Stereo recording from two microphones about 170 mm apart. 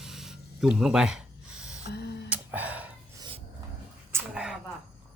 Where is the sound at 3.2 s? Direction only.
30° right (ahead or behind).